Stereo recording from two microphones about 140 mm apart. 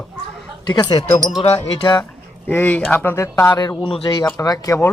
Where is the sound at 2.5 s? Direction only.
15° left (ahead or behind).